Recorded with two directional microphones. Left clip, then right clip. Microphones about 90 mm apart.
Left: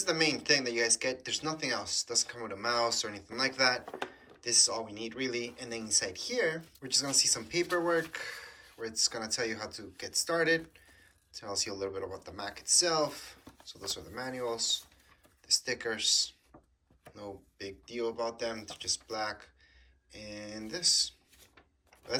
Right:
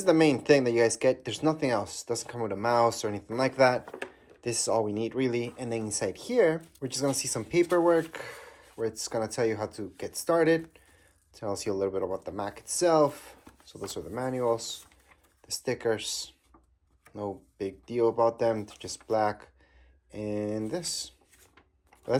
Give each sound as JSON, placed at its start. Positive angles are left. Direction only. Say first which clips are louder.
{"t": 0.0, "sound": "speech", "louder": "right 7 dB", "side_deg": -35}